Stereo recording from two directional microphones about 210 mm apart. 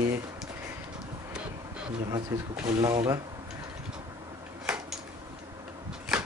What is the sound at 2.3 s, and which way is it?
Speech, 10° right (ahead or behind).